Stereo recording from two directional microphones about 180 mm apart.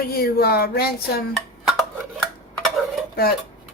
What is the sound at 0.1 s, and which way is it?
Speech, 60° left (ahead or behind).